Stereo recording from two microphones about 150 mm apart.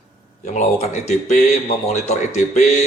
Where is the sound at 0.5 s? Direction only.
50° left (ahead or behind).